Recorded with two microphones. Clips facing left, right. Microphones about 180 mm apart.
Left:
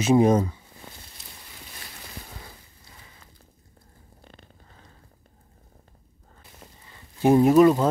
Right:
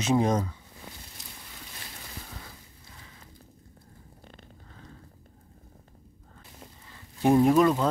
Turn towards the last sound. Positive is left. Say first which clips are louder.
# left 5 dB
turn(degrees=10)  # may be behind; listen again after turning